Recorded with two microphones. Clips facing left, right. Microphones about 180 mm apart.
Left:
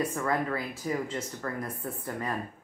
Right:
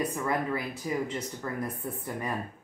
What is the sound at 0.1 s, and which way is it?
Speech, 15° right (ahead or behind).